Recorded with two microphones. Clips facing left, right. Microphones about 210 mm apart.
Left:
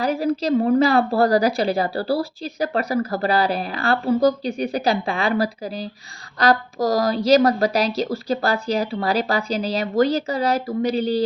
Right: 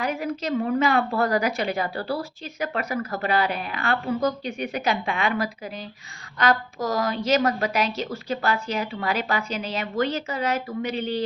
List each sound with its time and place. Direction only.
0.0 s a woman's voice: 35° left (ahead or behind)